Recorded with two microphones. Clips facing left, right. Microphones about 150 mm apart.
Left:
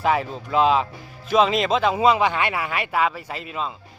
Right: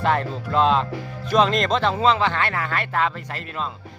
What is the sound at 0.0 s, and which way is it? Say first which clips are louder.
Speech: even; 5° left (ahead or behind).